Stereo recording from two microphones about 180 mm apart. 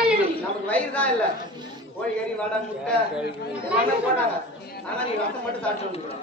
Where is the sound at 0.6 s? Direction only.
10° left (ahead or behind).